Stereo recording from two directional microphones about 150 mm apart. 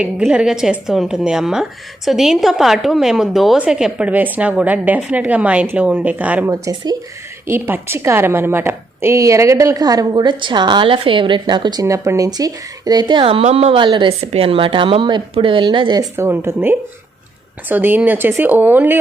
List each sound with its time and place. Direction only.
0.0 s a woman's voice: 5° right (ahead or behind)
6.5 s a woman's voice: 25° right (ahead or behind)
16.1 s a woman's voice: 15° right (ahead or behind)